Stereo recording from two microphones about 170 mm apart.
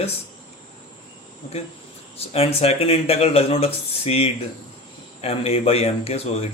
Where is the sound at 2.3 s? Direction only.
35° left (ahead or behind).